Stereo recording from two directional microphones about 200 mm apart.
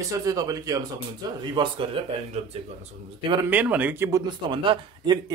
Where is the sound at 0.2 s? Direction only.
15° right (ahead or behind).